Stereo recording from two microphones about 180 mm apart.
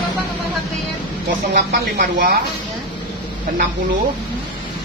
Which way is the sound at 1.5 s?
45° right (ahead or behind).